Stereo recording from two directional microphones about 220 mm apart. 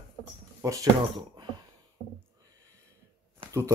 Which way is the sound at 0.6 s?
15° right (ahead or behind).